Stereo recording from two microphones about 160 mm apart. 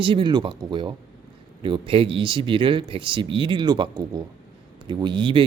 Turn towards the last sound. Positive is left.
turn(degrees=-30)  # may be behind; listen again after turning